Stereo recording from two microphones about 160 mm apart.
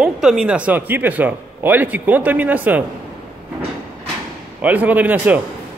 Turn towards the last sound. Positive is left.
turn(degrees=-10)  # may be behind; listen again after turning